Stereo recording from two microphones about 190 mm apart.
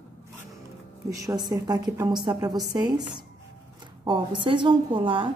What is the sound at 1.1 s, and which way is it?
A woman's voice, 20° right (ahead or behind).